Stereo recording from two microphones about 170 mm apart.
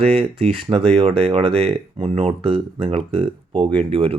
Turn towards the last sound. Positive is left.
turn(degrees=-35)  # may be behind; listen again after turning